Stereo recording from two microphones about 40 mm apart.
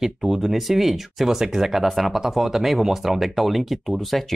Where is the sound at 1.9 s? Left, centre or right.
Centre.